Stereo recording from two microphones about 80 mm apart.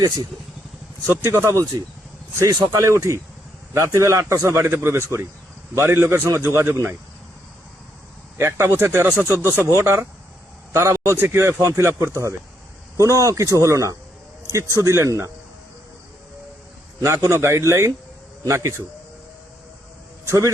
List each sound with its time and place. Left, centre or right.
1.0 s a man's voice: right
8.4 s a man's voice: right
10.7 s a sound: right
11.2 s a man's voice: right
17.2 s a man's voice: right
20.2 s a man's voice: right